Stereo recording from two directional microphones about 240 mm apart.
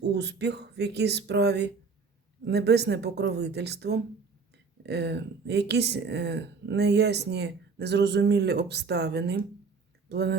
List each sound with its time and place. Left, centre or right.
0.0 s speech: right